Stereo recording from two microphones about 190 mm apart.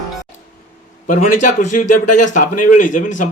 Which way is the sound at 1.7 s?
45° left (ahead or behind).